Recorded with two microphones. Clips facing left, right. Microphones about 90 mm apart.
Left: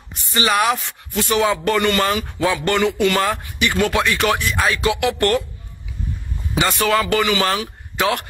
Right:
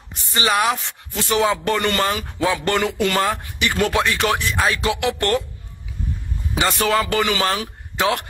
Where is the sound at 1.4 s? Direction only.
30° right (ahead or behind).